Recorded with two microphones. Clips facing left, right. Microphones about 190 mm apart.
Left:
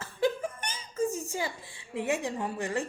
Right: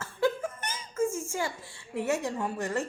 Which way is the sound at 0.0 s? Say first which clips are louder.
Right 1 dB; 15° left (ahead or behind).